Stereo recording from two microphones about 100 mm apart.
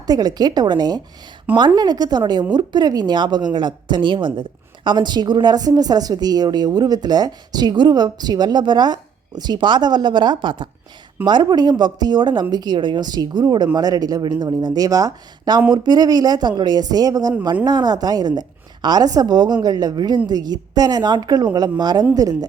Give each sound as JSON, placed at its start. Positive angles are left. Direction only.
{"t": 0.0, "sound": "a woman's voice", "side_deg": -40}